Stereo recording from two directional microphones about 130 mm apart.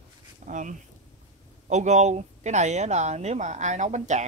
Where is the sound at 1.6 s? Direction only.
65° right (ahead or behind).